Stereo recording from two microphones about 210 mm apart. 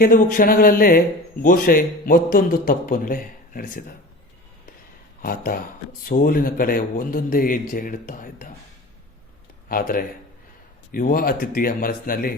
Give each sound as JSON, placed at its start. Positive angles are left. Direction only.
{"t": 0.0, "sound": "a man's voice", "side_deg": 40}
{"t": 5.2, "sound": "speech", "side_deg": 40}
{"t": 9.6, "sound": "a man's voice", "side_deg": 45}